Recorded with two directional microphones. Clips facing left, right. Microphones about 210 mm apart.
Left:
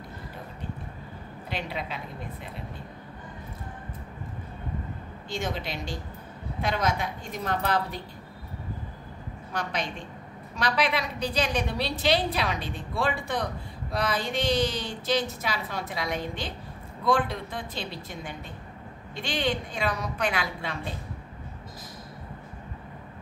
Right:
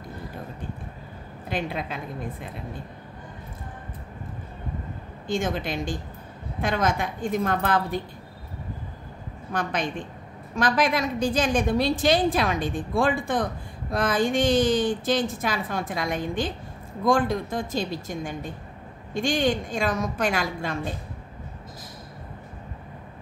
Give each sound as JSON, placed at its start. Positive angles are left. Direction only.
{"t": 1.5, "sound": "a woman's voice", "side_deg": -50}
{"t": 5.3, "sound": "a woman's voice", "side_deg": -50}
{"t": 9.5, "sound": "a woman's voice", "side_deg": -50}